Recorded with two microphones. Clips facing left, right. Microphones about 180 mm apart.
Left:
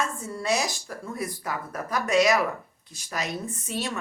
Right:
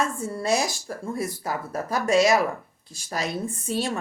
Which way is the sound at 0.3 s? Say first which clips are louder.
Right 2 dB; 30° right (ahead or behind).